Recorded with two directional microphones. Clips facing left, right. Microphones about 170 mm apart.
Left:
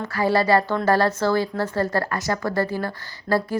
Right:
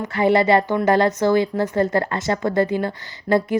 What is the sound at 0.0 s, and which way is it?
Speech, 20° right (ahead or behind).